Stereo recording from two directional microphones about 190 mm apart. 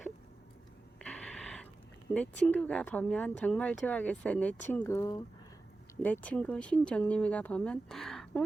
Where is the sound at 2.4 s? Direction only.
10° left (ahead or behind).